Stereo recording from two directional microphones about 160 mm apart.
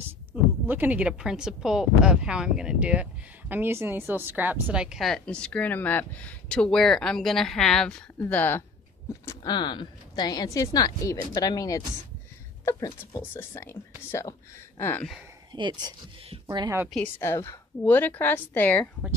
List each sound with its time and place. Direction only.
0.3 s a woman's voice: 10° right (ahead or behind); by 13.7 s 15° left (ahead or behind)
14.8 s a woman's voice: 15° left (ahead or behind)
15.5 s speech: 30° right (ahead or behind)
16.9 s a woman's voice: 10° left (ahead or behind)